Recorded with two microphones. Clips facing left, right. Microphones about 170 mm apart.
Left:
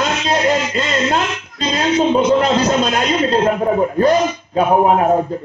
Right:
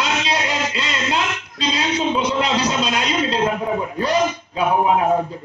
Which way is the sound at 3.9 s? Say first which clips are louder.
Left 5 dB; 50° left (ahead or behind).